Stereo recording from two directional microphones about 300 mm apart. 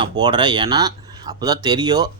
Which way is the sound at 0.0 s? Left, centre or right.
Centre.